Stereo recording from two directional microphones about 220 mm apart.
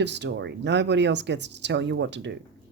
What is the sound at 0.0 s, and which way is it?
Speech, 50° right (ahead or behind).